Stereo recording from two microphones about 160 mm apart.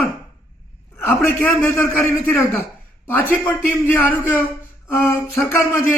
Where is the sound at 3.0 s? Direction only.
15° left (ahead or behind).